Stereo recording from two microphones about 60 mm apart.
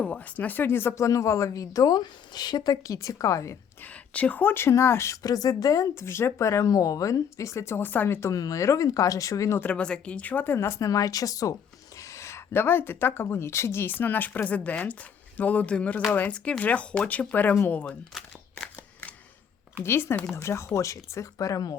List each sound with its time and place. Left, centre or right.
0.0 s speech: left
0.9 s speech: left
3.8 s speech: left
4.7 s speech: left
5.2 s speech: left
5.9 s speech: left
8.3 s speech: left
9.7 s speech: centre
10.8 s speech: left
11.9 s speech: left
13.9 s speech: left
19.8 s speech: left